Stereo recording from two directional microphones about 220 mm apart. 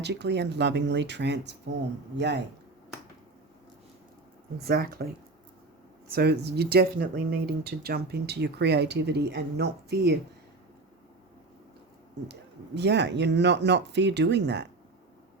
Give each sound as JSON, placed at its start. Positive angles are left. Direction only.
{"t": 0.0, "sound": "speech", "side_deg": -50}
{"t": 4.5, "sound": "speech", "side_deg": -45}
{"t": 6.1, "sound": "speech", "side_deg": -45}
{"t": 12.3, "sound": "speech", "side_deg": -50}